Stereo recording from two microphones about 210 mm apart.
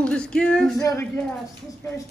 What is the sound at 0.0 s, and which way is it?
Speech, 5° left (ahead or behind).